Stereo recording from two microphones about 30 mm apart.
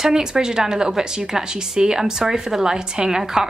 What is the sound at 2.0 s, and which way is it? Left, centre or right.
A woman's voice, centre.